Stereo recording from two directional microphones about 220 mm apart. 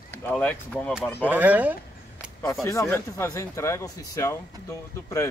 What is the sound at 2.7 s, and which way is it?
Speech, 10° left (ahead or behind).